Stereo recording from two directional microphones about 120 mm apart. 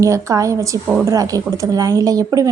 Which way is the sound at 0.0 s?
25° right (ahead or behind).